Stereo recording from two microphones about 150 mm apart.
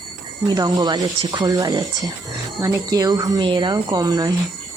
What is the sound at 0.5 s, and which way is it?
Speech, 25° right (ahead or behind).